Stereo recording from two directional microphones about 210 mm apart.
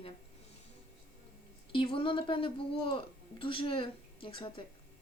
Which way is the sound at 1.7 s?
25° left (ahead or behind).